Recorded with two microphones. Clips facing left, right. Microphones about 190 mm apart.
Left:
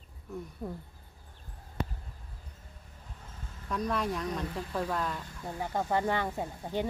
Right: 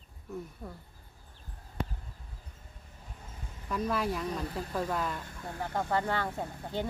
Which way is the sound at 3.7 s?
Centre (ahead or behind).